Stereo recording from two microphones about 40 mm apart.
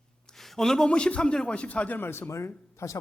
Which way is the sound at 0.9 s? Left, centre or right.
Left.